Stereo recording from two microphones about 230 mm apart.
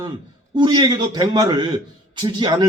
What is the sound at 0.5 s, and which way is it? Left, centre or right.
A man's voice, centre.